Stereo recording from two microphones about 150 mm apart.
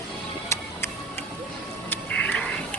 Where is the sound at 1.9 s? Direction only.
10° left (ahead or behind).